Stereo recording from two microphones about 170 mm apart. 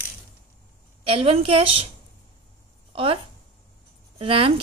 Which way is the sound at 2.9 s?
35° right (ahead or behind).